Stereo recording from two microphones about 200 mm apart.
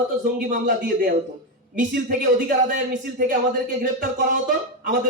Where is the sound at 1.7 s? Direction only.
40° right (ahead or behind).